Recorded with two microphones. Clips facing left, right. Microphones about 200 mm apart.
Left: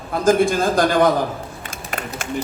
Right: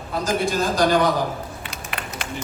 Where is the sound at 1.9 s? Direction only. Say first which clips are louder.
Left 6 dB; 45° left (ahead or behind).